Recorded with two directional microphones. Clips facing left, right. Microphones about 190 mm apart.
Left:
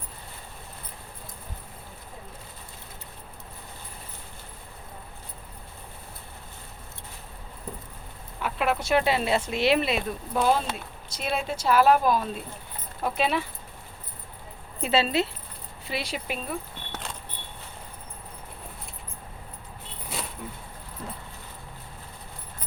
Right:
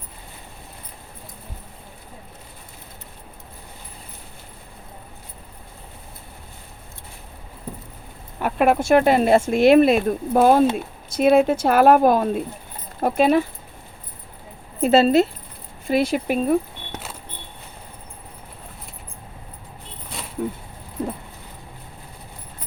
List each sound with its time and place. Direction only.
8.4 s speech: 50° right (ahead or behind)
14.8 s speech: 45° right (ahead or behind)
16.9 s vehicle: 5° right (ahead or behind)
20.1 s a sound: centre (ahead or behind)